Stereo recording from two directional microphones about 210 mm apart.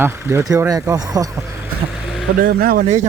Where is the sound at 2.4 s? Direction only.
45° right (ahead or behind).